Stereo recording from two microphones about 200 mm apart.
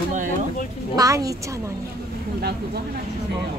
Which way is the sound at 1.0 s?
15° right (ahead or behind).